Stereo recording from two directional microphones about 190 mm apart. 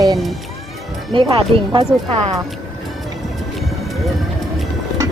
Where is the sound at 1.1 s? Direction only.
25° right (ahead or behind).